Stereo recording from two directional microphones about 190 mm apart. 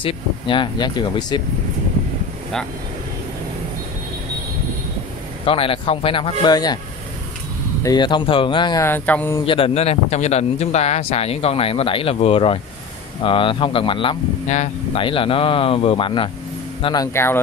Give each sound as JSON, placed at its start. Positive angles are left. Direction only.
{"t": 0.0, "sound": "speech", "side_deg": 25}
{"t": 5.4, "sound": "speech", "side_deg": 30}
{"t": 7.8, "sound": "speech", "side_deg": 20}
{"t": 8.8, "sound": "mantra", "side_deg": 10}
{"t": 9.5, "sound": "speech", "side_deg": 30}
{"t": 16.8, "sound": "mantra", "side_deg": 20}